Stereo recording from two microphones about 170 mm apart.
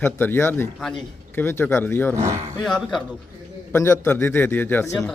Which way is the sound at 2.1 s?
20° right (ahead or behind).